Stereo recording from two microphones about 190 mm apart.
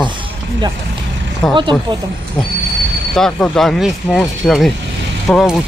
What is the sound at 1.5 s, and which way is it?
Speech, 25° right (ahead or behind).